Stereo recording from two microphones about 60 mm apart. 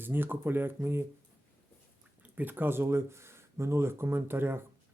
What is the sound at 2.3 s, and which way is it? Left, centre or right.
Speech, right.